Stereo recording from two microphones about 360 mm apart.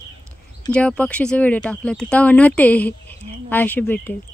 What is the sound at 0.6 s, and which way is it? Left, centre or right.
Speech, centre.